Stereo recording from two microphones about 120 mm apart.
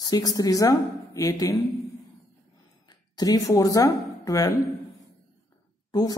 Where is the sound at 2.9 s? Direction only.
35° left (ahead or behind).